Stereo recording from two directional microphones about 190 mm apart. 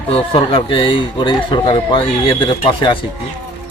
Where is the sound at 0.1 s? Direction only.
30° left (ahead or behind).